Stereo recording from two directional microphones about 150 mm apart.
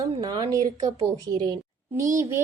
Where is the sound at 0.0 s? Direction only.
25° right (ahead or behind).